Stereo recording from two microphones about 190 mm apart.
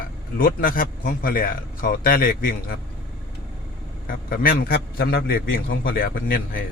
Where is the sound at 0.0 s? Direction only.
50° left (ahead or behind).